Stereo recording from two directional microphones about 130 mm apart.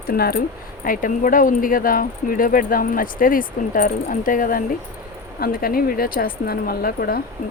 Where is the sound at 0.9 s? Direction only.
90° left.